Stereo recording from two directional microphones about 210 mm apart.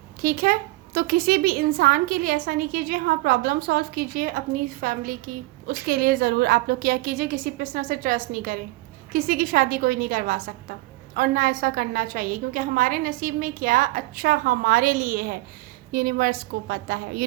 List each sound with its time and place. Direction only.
0.2 s a woman's voice: 45° right (ahead or behind)